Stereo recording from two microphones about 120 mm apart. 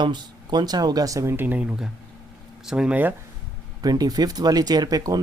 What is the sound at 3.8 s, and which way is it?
Speech, 35° right (ahead or behind).